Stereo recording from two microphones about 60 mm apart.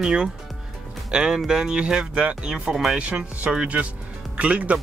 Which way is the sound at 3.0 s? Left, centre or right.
Right.